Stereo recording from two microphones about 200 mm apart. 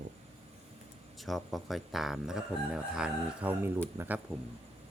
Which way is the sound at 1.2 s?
Centre (ahead or behind).